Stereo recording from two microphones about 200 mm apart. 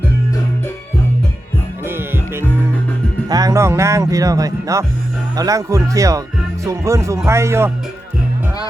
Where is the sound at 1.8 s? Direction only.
10° right (ahead or behind).